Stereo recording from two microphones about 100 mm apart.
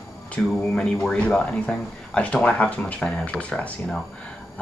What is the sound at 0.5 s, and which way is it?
Speech, centre (ahead or behind).